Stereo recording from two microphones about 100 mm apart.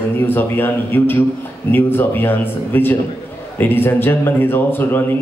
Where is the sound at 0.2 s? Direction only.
20° left (ahead or behind).